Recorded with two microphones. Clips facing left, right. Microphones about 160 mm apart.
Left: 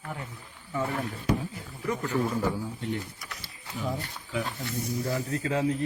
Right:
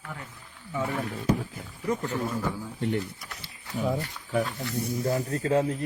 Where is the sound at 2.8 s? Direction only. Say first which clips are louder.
Right 4 dB; 55° right (ahead or behind).